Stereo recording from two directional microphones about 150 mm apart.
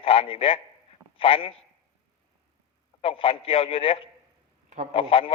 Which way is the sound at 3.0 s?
40° left (ahead or behind).